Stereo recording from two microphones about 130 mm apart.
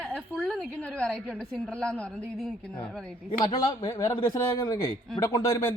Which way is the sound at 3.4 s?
35° left (ahead or behind).